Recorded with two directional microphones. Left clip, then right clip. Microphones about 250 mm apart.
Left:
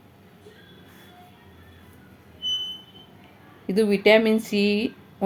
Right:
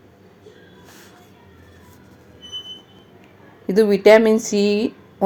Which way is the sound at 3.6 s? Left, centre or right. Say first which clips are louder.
Right 6 dB; centre.